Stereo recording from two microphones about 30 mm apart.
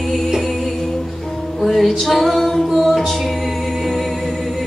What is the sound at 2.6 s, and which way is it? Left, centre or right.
Music, centre.